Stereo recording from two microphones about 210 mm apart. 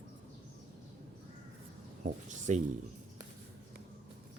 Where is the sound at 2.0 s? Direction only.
35° right (ahead or behind).